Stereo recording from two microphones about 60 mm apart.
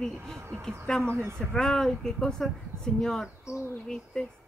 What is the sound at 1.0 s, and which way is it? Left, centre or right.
Speech, right.